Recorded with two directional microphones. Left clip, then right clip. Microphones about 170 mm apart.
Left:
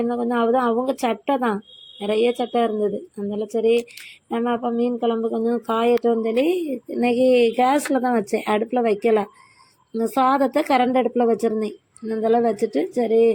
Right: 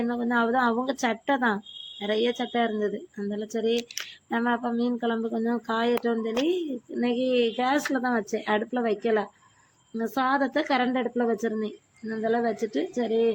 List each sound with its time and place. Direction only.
0.0 s speech: 10° left (ahead or behind)